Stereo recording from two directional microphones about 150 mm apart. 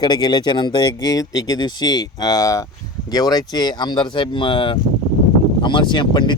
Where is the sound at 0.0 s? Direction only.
30° left (ahead or behind).